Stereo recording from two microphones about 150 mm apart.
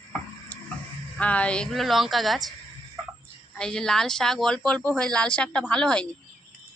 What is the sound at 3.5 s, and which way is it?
Speech, 5° left (ahead or behind).